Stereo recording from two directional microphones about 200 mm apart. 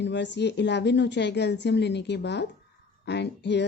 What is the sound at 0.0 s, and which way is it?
A woman's voice, 60° left (ahead or behind).